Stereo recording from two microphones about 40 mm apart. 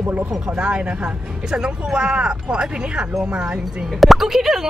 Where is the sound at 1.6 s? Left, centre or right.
Right.